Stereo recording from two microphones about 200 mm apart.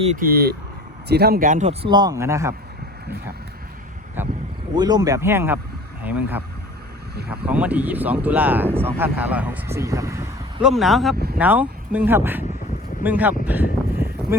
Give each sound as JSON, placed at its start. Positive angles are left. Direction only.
{"t": 0.0, "sound": "speech", "side_deg": -35}
{"t": 0.3, "sound": "speech", "side_deg": -50}
{"t": 1.9, "sound": "speech", "side_deg": -20}
{"t": 4.2, "sound": "speech", "side_deg": -10}
{"t": 10.6, "sound": "speech", "side_deg": 0}